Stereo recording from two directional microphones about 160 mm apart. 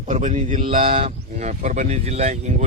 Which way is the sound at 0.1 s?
50° right (ahead or behind).